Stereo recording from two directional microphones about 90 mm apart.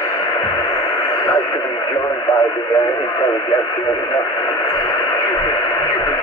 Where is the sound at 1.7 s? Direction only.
55° left (ahead or behind).